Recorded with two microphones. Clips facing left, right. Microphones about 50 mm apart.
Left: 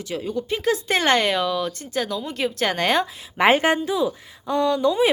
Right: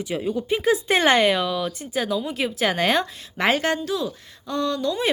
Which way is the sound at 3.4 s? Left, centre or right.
Left.